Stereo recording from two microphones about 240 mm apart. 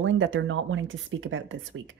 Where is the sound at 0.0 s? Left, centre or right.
Right.